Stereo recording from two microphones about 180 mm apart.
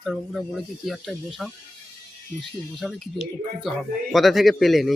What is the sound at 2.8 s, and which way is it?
Speech, centre (ahead or behind).